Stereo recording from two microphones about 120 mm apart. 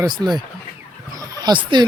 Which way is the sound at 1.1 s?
35° right (ahead or behind).